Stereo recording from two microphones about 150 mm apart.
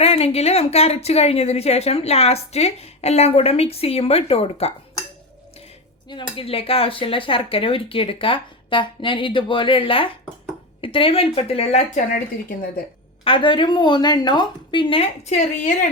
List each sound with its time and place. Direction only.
0.0 s a woman's voice: 45° left (ahead or behind)
6.1 s speech: 35° left (ahead or behind)
12.1 s a woman's voice: 70° left (ahead or behind)
13.2 s speech: 35° left (ahead or behind); by 15.7 s 50° left (ahead or behind)